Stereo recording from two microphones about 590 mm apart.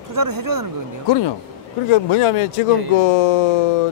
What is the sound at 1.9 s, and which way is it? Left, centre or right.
Speech, left.